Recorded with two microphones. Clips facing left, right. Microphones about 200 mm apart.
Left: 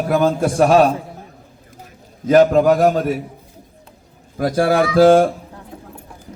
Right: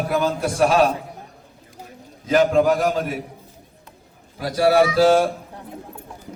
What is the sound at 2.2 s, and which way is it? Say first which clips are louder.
Speech: left 5 dB; 45° left (ahead or behind).